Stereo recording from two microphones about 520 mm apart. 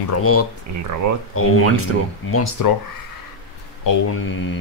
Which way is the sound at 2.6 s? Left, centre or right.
Left.